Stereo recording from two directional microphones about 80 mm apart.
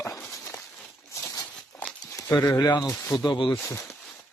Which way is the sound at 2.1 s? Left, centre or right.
Left.